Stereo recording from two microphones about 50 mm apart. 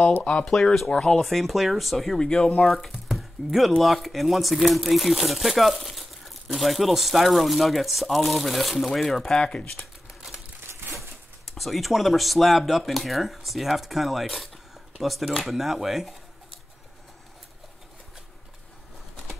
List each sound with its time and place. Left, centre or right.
0.2 s speech: left
0.5 s speech: centre
1.2 s speech: centre
2.1 s speech: centre
3.1 s chopping: centre
3.8 s speech: centre
9.4 s speech: centre
11.0 s speech: centre